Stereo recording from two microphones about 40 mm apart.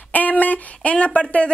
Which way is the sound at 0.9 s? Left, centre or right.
Left.